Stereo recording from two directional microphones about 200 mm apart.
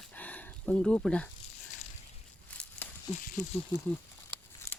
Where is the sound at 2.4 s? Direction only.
5° left (ahead or behind).